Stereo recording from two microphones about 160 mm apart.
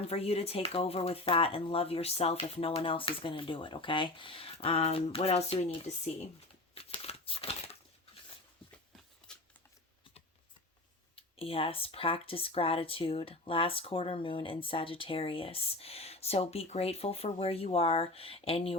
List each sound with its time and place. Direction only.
0.1 s speech: 40° left (ahead or behind)
6.7 s crumpling: 35° left (ahead or behind)
11.3 s speech: 35° left (ahead or behind)